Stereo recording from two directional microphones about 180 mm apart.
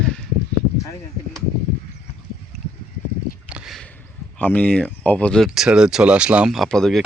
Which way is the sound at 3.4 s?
5° right (ahead or behind).